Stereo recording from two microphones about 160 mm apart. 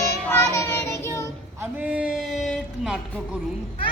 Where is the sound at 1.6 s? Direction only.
10° right (ahead or behind).